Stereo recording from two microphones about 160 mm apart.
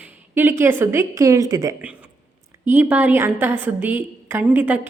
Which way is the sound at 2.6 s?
10° right (ahead or behind).